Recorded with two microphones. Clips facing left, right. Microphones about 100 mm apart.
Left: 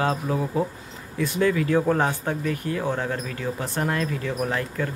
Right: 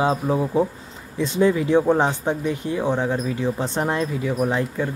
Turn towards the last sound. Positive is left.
turn(degrees=-15)  # may be behind; listen again after turning